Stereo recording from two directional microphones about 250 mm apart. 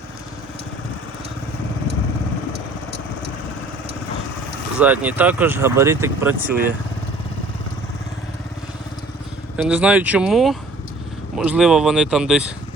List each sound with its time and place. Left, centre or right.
2.5 s vehicle: right
4.8 s speech: centre
9.6 s speech: centre